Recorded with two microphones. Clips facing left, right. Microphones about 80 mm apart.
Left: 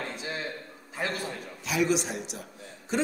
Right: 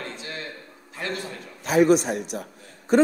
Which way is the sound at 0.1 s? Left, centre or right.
Centre.